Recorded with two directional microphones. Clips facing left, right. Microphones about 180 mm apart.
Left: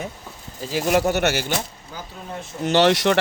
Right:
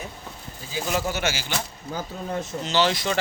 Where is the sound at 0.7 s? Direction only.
70° left (ahead or behind).